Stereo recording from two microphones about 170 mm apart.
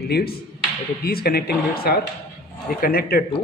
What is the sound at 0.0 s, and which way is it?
Speech, 65° left (ahead or behind).